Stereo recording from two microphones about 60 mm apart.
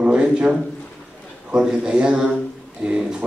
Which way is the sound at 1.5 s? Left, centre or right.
Centre.